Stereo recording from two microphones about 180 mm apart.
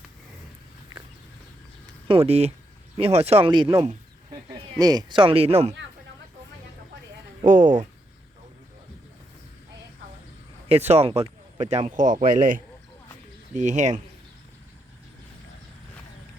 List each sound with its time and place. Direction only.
2.0 s speech: 30° right (ahead or behind)
7.4 s speech: 40° right (ahead or behind)
10.7 s speech: 35° right (ahead or behind)